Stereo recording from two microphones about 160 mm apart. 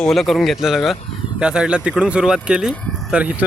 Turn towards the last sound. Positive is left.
turn(degrees=-5)  # may be behind; listen again after turning